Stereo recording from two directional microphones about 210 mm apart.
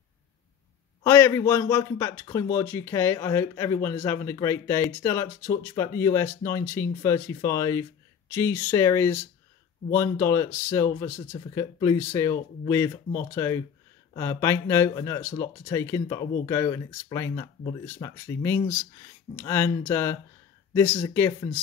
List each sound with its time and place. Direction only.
1.0 s speech: 10° left (ahead or behind)